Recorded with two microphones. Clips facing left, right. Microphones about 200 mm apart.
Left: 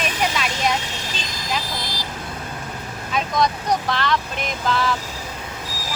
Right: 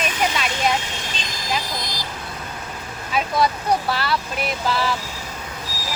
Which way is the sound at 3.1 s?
5° right (ahead or behind).